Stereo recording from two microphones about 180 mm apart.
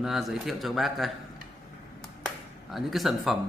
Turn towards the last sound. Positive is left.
turn(degrees=0)  # may be behind; listen again after turning